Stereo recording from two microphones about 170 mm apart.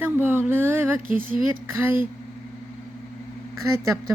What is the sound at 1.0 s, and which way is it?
Speech, 55° right (ahead or behind).